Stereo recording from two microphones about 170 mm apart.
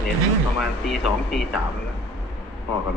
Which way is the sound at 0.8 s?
Centre (ahead or behind).